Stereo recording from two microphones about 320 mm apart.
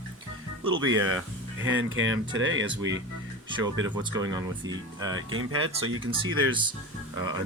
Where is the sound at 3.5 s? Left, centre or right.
Centre.